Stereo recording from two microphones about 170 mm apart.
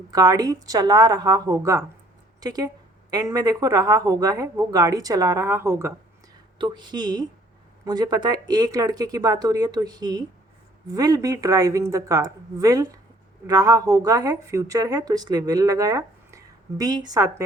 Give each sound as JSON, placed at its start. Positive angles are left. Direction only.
{"t": 0.1, "sound": "speech", "side_deg": -20}
{"t": 6.6, "sound": "speech", "side_deg": -25}